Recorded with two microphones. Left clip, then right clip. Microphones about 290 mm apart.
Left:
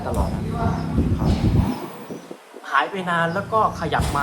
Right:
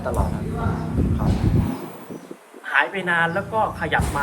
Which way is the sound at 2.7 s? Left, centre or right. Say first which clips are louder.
Right 1 dB; centre.